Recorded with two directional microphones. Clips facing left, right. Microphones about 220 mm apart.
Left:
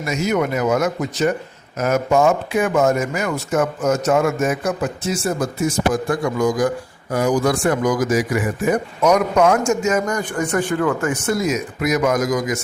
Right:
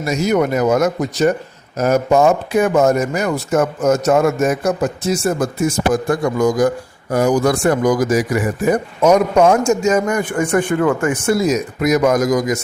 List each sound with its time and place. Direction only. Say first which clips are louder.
0.0 s speech: right 4 dB; 35° right (ahead or behind)
9.0 s a man's voice: right 4 dB; 25° right (ahead or behind)
10.2 s a man's voice: right 4 dB; 15° right (ahead or behind)
11.3 s speech: right 4 dB; 40° right (ahead or behind)